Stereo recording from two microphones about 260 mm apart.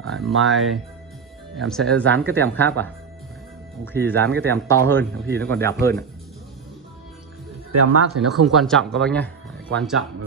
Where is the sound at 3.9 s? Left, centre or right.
Centre.